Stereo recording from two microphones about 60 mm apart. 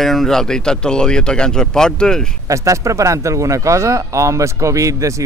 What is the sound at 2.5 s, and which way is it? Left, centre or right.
Speech, right.